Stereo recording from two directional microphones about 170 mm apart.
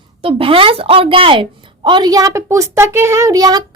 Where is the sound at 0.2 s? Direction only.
35° right (ahead or behind).